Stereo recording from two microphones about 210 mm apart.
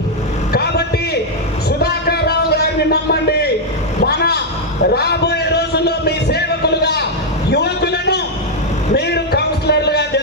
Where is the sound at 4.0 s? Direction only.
50° left (ahead or behind).